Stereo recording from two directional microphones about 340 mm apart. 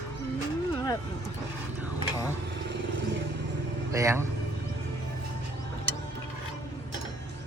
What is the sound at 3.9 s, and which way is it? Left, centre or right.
Speech, centre.